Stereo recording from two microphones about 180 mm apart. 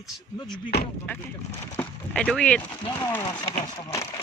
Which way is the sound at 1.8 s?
5° left (ahead or behind).